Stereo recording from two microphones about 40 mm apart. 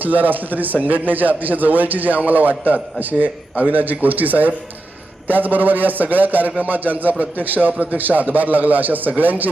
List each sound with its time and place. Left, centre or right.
0.0 s a man's voice: right
7.7 s a man's voice: right
7.9 s a man's voice: right